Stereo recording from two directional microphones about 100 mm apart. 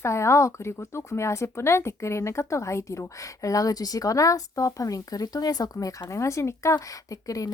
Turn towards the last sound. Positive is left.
turn(degrees=35)  # may be behind; listen again after turning